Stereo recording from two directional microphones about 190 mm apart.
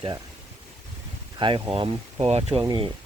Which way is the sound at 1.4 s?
25° right (ahead or behind).